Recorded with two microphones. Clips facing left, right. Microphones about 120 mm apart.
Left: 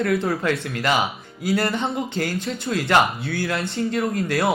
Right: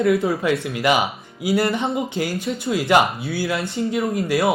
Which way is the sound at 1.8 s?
10° right (ahead or behind).